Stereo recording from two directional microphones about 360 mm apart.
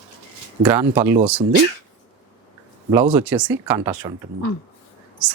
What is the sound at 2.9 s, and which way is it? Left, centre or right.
Speech, centre.